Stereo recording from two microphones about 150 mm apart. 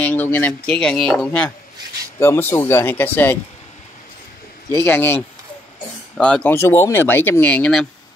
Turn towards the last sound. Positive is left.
turn(degrees=10)  # may be behind; listen again after turning